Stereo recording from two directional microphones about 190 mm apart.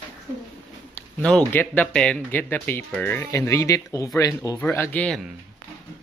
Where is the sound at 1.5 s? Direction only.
10° left (ahead or behind).